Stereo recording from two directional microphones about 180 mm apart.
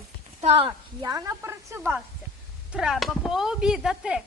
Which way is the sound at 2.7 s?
Centre (ahead or behind).